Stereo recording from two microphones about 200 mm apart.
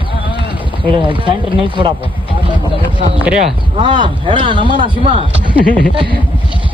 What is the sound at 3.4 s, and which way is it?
Speech, 25° right (ahead or behind).